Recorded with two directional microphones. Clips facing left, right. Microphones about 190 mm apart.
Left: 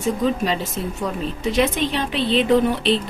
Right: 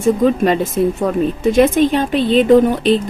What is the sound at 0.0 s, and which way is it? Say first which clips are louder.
Speech: right 7 dB; 50° right (ahead or behind).